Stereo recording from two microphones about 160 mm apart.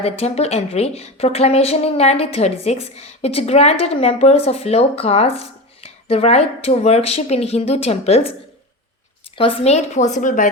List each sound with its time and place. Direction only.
0.0 s a woman's voice: 40° left (ahead or behind)
9.4 s a woman's voice: 35° left (ahead or behind); by 10.5 s 55° left (ahead or behind)